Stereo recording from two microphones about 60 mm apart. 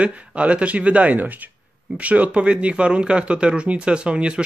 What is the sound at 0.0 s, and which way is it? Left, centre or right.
Speech, right.